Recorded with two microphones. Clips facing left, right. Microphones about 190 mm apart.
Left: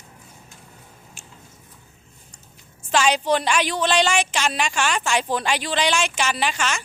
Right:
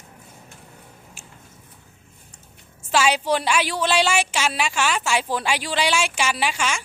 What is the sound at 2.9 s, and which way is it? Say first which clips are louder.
A woman's voice: left 1 dB; 5° right (ahead or behind).